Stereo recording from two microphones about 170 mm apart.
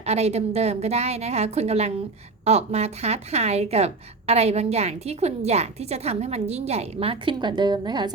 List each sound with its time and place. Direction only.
0.0 s speech: 40° right (ahead or behind)